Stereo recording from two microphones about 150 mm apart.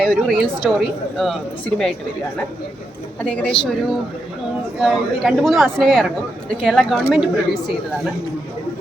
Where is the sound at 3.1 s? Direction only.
5° left (ahead or behind).